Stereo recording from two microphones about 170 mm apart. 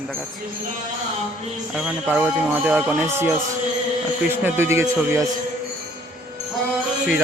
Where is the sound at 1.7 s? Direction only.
5° right (ahead or behind).